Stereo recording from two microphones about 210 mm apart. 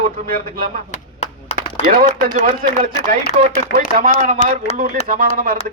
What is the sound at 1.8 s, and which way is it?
A man's voice, 40° right (ahead or behind).